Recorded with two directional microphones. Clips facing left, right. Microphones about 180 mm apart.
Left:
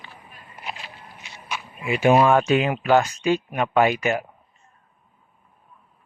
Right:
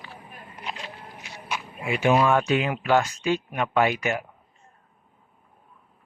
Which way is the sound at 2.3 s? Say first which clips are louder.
Left 4 dB; 20° left (ahead or behind).